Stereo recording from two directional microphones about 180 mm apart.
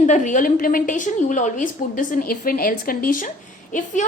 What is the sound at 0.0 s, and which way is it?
A woman's voice, 45° left (ahead or behind).